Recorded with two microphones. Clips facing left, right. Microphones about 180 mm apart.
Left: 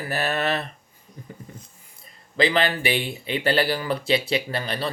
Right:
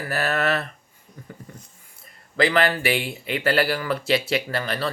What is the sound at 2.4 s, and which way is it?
Speech, 20° left (ahead or behind).